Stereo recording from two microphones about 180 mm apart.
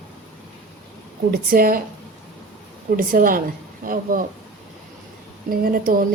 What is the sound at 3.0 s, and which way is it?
A woman's voice, 50° right (ahead or behind).